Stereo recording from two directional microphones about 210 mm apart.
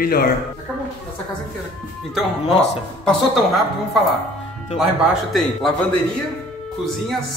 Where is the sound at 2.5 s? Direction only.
30° left (ahead or behind).